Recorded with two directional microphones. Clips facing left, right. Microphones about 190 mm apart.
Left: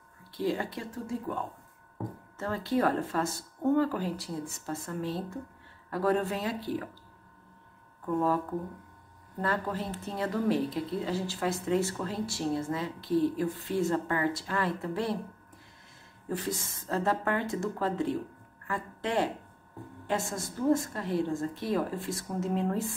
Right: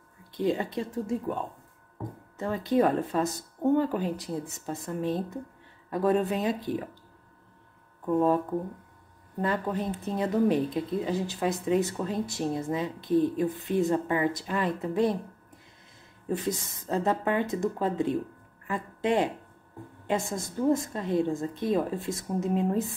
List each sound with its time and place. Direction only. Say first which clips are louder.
0.4 s speech: right 3 dB; 20° right (ahead or behind)
8.0 s speech: right 4 dB; 20° right (ahead or behind)
9.4 s speech: right 3 dB; 20° right (ahead or behind)
16.3 s speech: right 4 dB; 20° right (ahead or behind)